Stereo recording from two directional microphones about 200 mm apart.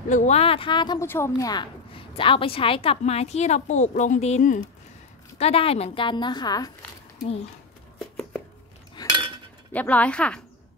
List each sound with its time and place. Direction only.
0.1 s a woman's voice: 35° left (ahead or behind)
5.4 s a woman's voice: 30° left (ahead or behind)
9.0 s cutlery: 20° left (ahead or behind)
9.7 s speech: 5° left (ahead or behind)